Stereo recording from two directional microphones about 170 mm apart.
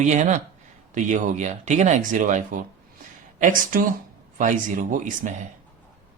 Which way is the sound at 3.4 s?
50° right (ahead or behind).